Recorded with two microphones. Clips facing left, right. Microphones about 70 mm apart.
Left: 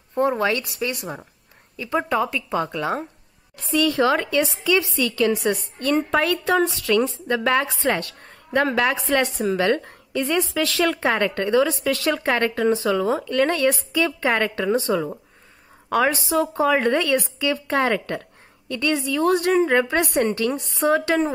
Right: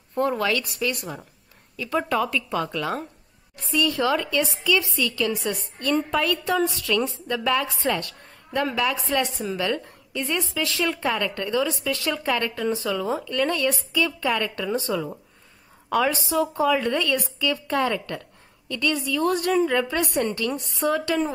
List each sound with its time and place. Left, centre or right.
0.1 s speech: left
4.0 s a woman's voice: left
11.1 s a woman's voice: left